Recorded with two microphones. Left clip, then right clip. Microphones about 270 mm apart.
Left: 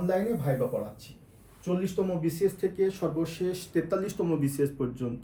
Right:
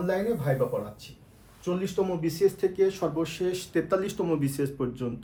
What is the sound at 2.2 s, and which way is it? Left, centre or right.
Speech, right.